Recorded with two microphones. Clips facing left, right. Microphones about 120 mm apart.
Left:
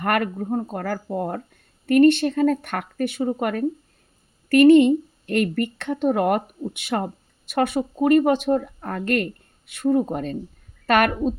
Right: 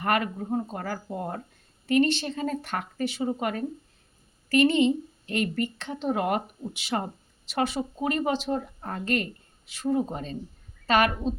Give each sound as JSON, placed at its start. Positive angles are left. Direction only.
{"t": 0.0, "sound": "a woman's voice", "side_deg": 55}
{"t": 4.4, "sound": "a woman's voice", "side_deg": 55}